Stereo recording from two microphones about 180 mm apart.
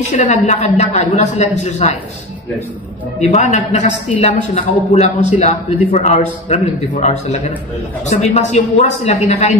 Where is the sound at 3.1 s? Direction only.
40° left (ahead or behind).